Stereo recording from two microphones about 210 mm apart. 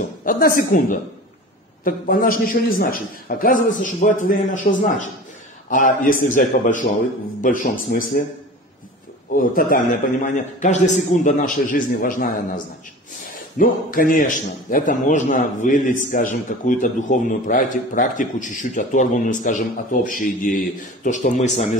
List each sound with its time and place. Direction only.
0.2 s a woman's voice: 40° left (ahead or behind)
9.3 s a man's voice: 40° left (ahead or behind)